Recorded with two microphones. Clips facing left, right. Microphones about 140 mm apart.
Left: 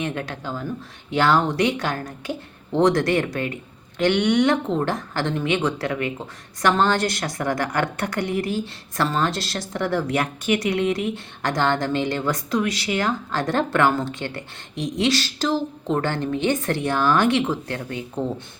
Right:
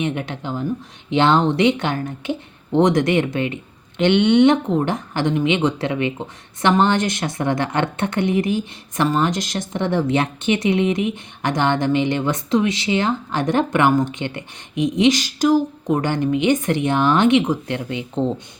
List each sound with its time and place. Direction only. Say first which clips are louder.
0.0 s speech: right 4 dB; 20° right (ahead or behind)